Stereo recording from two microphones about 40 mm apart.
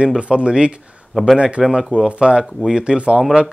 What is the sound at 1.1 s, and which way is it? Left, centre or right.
Speech, centre.